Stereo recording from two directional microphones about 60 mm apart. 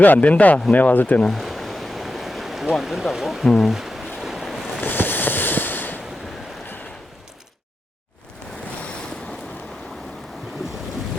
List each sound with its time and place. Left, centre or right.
0.0 s speech: left
1.3 s stream: centre
2.7 s speech: centre
3.4 s speech: centre
3.7 s boat: centre
4.8 s a sound: left